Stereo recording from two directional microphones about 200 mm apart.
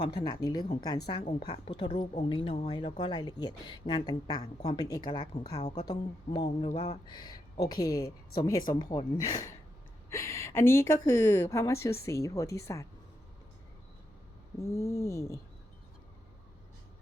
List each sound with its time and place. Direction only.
0.2 s speech: 20° left (ahead or behind)
1.1 s speech: 30° left (ahead or behind)
5.5 s speech: 35° left (ahead or behind)
6.3 s speech: 20° left (ahead or behind)
6.7 s speech: 35° left (ahead or behind)
7.1 s speech: 20° left (ahead or behind)
14.6 s speech: 15° left (ahead or behind)